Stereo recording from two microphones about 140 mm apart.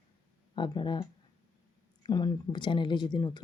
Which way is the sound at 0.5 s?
35° left (ahead or behind).